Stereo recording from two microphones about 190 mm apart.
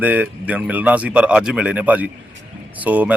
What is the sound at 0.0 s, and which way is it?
Speech, 10° right (ahead or behind).